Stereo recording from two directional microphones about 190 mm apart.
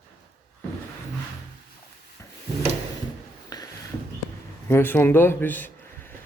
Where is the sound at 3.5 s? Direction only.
20° left (ahead or behind).